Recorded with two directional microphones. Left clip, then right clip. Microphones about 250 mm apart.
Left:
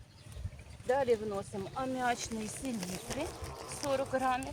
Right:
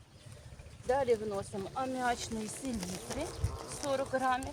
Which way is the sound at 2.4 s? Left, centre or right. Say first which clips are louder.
Even; centre.